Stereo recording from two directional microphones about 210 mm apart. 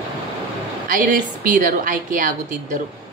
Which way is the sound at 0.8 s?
40° right (ahead or behind).